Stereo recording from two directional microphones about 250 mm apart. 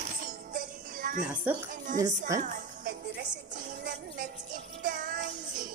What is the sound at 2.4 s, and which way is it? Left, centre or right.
Music, right.